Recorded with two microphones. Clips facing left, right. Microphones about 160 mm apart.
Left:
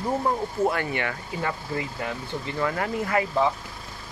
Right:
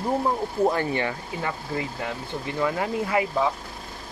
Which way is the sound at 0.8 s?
30° right (ahead or behind).